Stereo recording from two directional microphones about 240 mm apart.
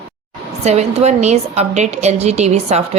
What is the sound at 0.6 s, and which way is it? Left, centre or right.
A woman's voice, right.